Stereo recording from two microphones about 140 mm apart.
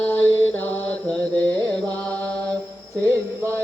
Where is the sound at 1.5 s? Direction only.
25° right (ahead or behind).